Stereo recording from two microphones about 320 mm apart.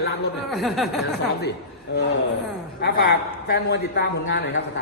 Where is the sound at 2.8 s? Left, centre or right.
Left.